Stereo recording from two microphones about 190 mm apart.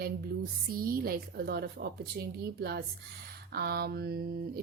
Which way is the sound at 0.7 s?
50° right (ahead or behind).